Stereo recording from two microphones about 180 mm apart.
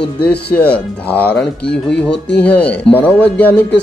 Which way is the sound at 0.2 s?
60° left (ahead or behind).